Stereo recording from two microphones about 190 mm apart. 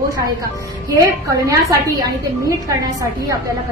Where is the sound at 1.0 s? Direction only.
15° right (ahead or behind).